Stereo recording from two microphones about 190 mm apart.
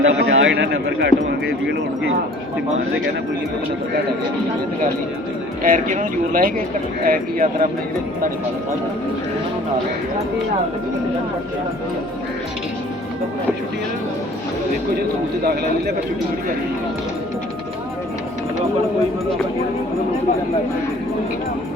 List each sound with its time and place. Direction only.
0.0 s a man's voice: 85° right; by 1.1 s 60° right (ahead or behind)
5.6 s speech: 45° right (ahead or behind)